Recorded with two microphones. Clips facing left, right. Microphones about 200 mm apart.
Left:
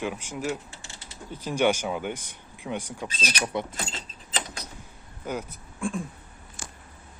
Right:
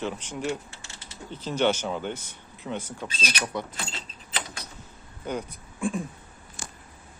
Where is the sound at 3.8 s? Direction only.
45° left (ahead or behind).